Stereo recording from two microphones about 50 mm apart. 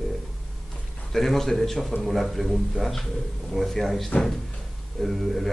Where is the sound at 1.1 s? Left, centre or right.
Centre.